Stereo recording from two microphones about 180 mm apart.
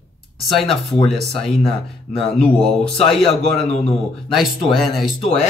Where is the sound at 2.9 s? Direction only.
30° left (ahead or behind).